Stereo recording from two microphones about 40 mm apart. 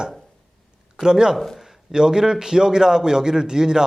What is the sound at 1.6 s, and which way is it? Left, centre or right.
A man's voice, centre.